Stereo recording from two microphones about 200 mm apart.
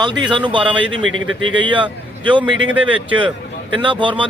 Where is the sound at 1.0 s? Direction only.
85° right.